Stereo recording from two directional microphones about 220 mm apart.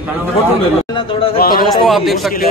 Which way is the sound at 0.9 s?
25° left (ahead or behind).